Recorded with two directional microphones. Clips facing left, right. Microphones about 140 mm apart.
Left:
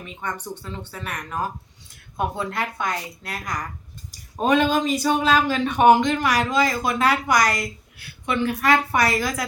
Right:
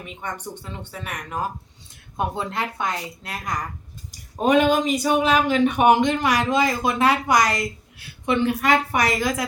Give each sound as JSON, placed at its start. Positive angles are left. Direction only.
{"t": 0.8, "sound": "speech", "side_deg": -15}
{"t": 4.4, "sound": "speech", "side_deg": -15}